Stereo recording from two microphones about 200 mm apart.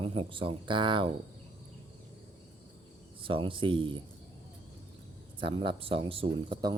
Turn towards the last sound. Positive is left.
turn(degrees=-25)  # may be behind; listen again after turning